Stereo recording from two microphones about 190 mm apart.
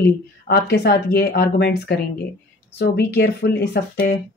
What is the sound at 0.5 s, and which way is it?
Speech, 60° left (ahead or behind).